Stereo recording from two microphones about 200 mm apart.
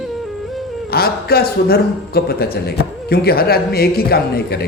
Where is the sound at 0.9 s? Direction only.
50° left (ahead or behind).